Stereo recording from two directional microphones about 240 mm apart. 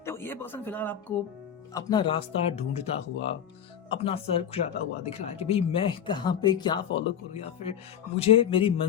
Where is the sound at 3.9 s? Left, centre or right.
Left.